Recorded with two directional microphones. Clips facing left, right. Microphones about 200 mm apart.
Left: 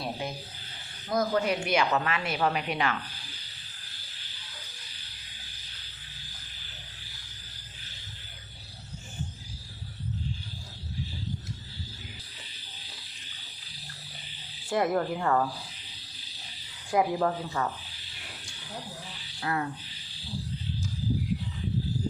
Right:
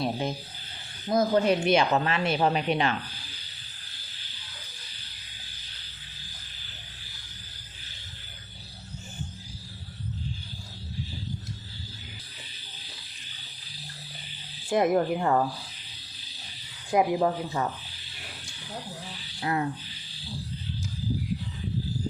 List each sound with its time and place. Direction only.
0.0 s speech: 25° right (ahead or behind)
14.7 s speech: 20° right (ahead or behind)
16.9 s speech: 20° right (ahead or behind)
19.4 s speech: 20° right (ahead or behind)